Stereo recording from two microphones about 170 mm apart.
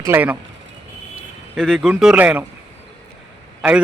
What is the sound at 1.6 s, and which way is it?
Speech, centre (ahead or behind).